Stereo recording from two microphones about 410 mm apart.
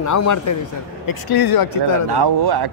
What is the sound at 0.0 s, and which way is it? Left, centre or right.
Speech, left.